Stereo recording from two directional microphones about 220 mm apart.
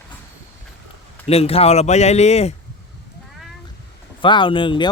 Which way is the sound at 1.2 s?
25° left (ahead or behind).